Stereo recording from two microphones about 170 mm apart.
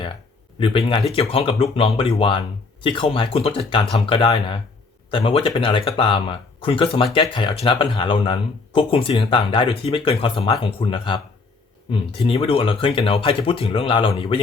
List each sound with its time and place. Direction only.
0.6 s speech: 30° left (ahead or behind)